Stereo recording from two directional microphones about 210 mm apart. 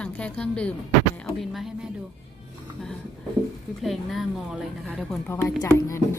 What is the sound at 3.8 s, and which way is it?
A woman's voice, centre (ahead or behind).